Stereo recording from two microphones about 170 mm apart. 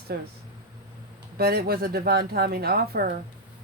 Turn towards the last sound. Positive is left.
turn(degrees=-65)  # may be behind; listen again after turning